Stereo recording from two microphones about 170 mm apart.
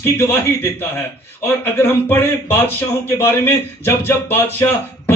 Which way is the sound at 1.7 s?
15° left (ahead or behind).